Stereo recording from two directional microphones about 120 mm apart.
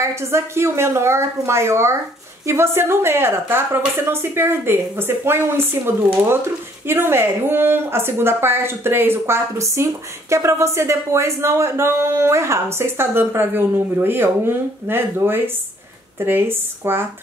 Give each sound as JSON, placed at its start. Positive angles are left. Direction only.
{"t": 0.0, "sound": "speech", "side_deg": -25}